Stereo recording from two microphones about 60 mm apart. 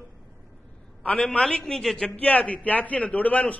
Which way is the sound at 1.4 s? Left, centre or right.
Centre.